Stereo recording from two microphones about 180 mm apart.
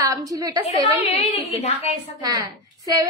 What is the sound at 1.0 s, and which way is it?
Speech, 35° left (ahead or behind).